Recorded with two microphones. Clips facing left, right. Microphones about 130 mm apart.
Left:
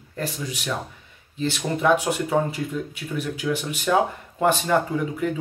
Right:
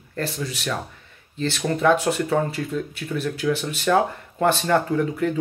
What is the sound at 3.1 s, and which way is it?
Speech, 10° left (ahead or behind).